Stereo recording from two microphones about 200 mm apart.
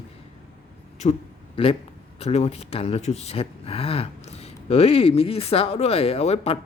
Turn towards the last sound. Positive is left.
turn(degrees=30)  # may be behind; listen again after turning